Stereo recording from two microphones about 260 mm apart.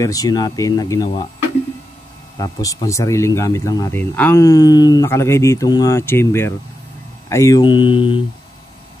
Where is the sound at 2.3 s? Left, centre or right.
Centre.